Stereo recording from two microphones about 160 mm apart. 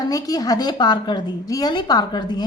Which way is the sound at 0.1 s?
20° left (ahead or behind).